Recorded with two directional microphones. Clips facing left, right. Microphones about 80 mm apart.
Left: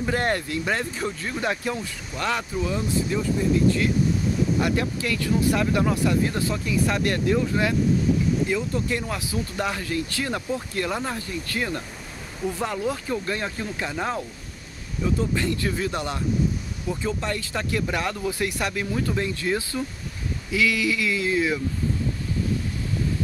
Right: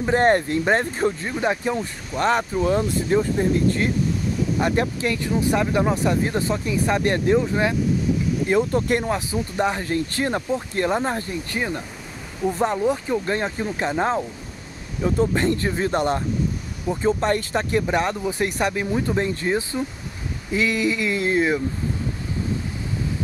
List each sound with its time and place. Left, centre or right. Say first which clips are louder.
0.0 s speech: right 7 dB; right
1.3 s speech: right 4 dB; centre
1.8 s speech: right 6 dB; right
8.5 s speech: right 6 dB; right
9.0 s speech: right 5 dB; right
11.5 s speech: right 1 dB; right
12.8 s speech: right 5 dB; centre; by 17.6 s right
17.6 s speech: right 5 dB; right
20.5 s speech: right 2 dB; right